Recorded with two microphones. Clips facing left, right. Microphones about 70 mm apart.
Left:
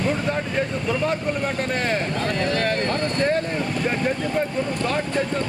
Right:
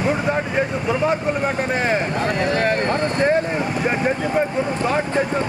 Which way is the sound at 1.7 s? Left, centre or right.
Centre.